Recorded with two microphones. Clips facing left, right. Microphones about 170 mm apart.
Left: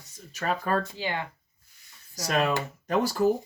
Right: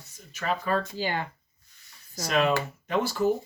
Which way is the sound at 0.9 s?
35° right (ahead or behind).